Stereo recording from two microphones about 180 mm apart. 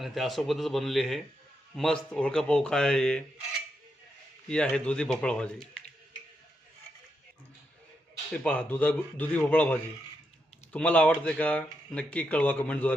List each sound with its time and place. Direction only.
0.0 s speech: centre (ahead or behind)
4.4 s speech: 5° left (ahead or behind)
8.3 s speech: 10° left (ahead or behind)